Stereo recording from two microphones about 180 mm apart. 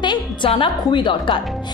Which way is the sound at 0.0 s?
25° left (ahead or behind).